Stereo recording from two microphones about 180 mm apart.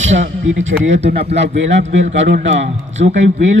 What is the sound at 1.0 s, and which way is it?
Speech, 35° right (ahead or behind).